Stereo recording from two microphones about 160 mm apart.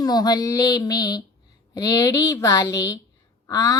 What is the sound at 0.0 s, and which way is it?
A woman's voice, 25° left (ahead or behind).